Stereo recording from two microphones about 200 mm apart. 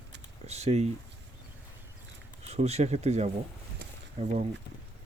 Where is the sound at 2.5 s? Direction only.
30° right (ahead or behind).